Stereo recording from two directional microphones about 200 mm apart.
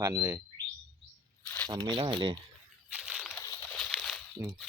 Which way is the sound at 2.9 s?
Centre (ahead or behind).